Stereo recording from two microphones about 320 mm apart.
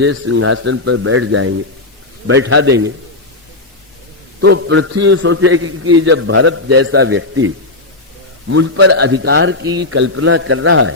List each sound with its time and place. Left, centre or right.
0.0 s speech: right
4.4 s speech: right